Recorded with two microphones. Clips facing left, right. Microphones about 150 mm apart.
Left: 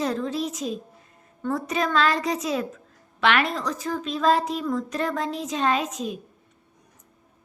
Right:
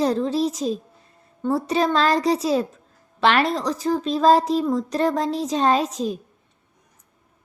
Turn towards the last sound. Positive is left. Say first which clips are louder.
# right 5 dB
turn(degrees=-35)  # may be behind; listen again after turning